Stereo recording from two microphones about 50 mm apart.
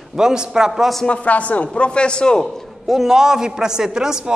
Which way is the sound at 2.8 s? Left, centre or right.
Centre.